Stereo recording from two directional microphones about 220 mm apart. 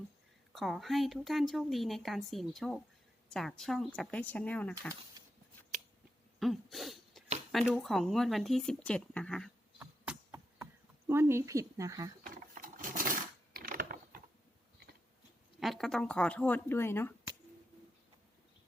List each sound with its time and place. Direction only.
0.5 s speech: centre (ahead or behind)
6.4 s throat clearing: centre (ahead or behind)
7.7 s speech: centre (ahead or behind)
9.7 s cough: 5° right (ahead or behind)
11.1 s speech: 10° right (ahead or behind)
12.2 s sewing machine: 40° right (ahead or behind)
15.6 s speech: centre (ahead or behind)